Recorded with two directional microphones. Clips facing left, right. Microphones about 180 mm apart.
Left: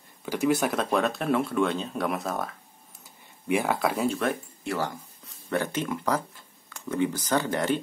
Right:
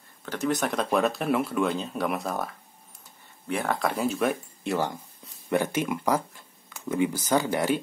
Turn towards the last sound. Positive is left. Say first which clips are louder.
# right 1 dB
turn(degrees=-10)  # may be behind; listen again after turning